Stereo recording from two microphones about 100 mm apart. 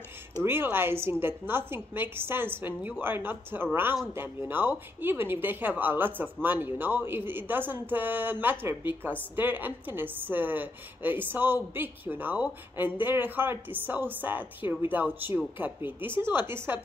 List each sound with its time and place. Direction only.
0.4 s speech: 20° right (ahead or behind)